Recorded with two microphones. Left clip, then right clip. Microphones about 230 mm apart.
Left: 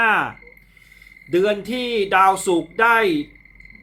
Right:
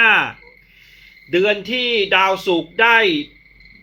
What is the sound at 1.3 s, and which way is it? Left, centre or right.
Speech, centre.